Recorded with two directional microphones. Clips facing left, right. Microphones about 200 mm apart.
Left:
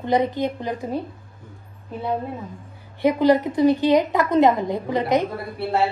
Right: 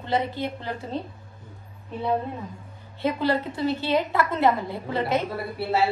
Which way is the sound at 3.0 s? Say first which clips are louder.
Left 7 dB; 15° left (ahead or behind).